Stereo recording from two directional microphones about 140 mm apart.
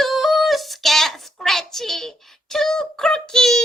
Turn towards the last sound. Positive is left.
turn(degrees=5)  # may be behind; listen again after turning